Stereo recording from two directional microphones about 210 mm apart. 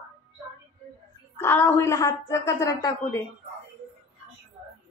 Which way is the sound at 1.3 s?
10° left (ahead or behind).